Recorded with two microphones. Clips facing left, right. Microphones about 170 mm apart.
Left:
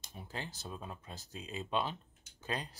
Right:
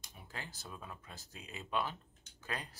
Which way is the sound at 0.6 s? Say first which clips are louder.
Left 4 dB; 25° left (ahead or behind).